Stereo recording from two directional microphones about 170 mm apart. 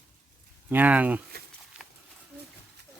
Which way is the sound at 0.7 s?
10° right (ahead or behind).